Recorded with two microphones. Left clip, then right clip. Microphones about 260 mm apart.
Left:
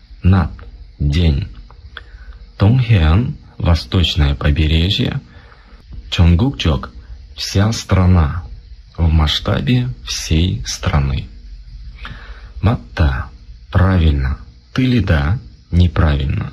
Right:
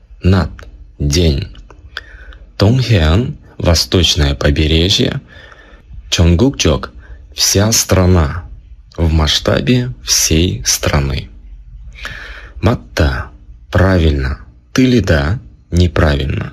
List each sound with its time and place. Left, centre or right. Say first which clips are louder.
0.2 s clicking: right 4 dB; right
2.5 s speech: right 5 dB; right
12.0 s music: right 8 dB; right